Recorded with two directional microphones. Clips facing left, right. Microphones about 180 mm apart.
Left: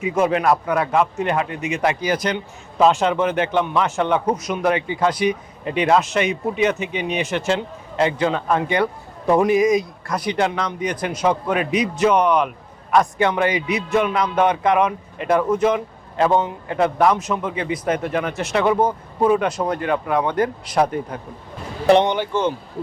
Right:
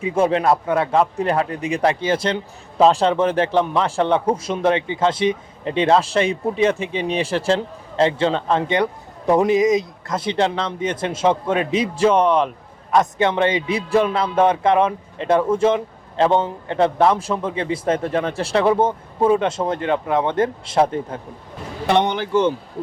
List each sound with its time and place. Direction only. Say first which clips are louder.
0.0 s a man's voice: right 1 dB; 30° right (ahead or behind)